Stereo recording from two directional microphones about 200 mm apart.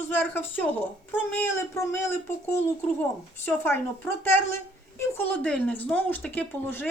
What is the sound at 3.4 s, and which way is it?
Speech, 10° left (ahead or behind).